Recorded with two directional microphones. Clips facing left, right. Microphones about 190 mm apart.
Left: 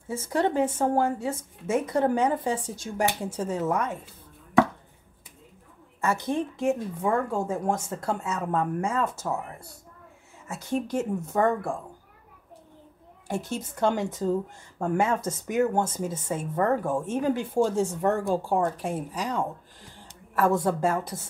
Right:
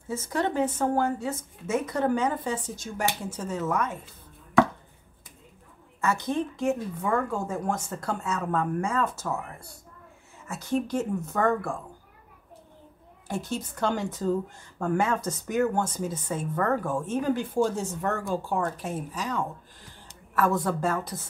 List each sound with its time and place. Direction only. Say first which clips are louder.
0.1 s speech: left 2 dB; 30° left (ahead or behind)
5.9 s a sound: even; 30° left (ahead or behind)
6.3 s a woman's voice: left 1 dB; 30° left (ahead or behind)
13.3 s a woman's voice: left 1 dB; 25° left (ahead or behind)